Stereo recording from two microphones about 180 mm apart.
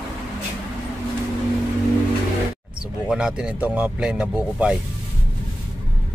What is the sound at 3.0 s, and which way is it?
Speech, 5° right (ahead or behind).